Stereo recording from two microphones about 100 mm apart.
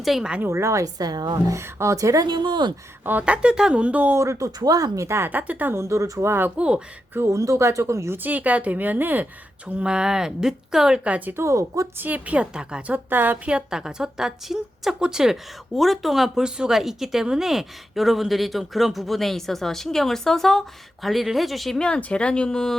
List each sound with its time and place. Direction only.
0.0 s a woman's voice: 5° right (ahead or behind)
0.4 s speech: 30° right (ahead or behind)
1.5 s speech: 30° right (ahead or behind); by 2.7 s 50° right (ahead or behind)
3.0 s a woman's voice: 20° right (ahead or behind)
4.1 s speech: 30° right (ahead or behind)
6.6 s a woman's voice: 10° right (ahead or behind)
7.2 s a woman's voice: 30° right (ahead or behind); by 11.3 s 10° right (ahead or behind)
11.3 s speech: 30° right (ahead or behind)
11.9 s a woman's voice: 15° right (ahead or behind); by 22.7 s 5° left (ahead or behind)